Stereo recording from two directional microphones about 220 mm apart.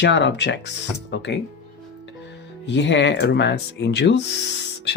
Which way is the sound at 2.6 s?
55° left (ahead or behind).